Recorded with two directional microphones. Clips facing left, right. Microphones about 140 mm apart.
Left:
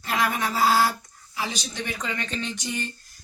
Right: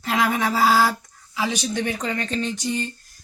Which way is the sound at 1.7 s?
45° right (ahead or behind).